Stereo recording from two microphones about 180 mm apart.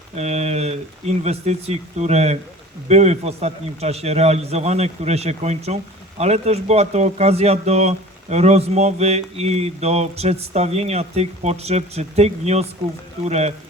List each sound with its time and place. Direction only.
0.2 s speech: 35° right (ahead or behind)